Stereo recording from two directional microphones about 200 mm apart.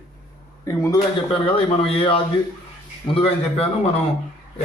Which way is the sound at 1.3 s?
30° left (ahead or behind).